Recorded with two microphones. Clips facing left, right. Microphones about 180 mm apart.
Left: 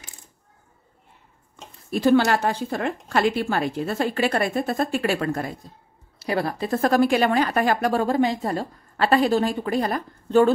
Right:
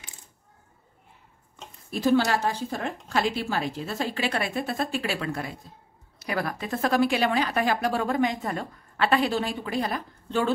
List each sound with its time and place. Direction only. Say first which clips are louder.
1.9 s speech: left 4 dB; 65° left (ahead or behind); by 5.5 s 45° left (ahead or behind)
6.1 s speech: left 5 dB; 30° left (ahead or behind); by 8.0 s 50° left (ahead or behind)
8.0 s a woman's voice: left 4 dB; 30° left (ahead or behind)